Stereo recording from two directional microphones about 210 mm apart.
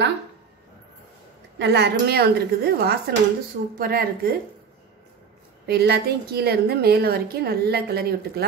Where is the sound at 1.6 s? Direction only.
50° right (ahead or behind).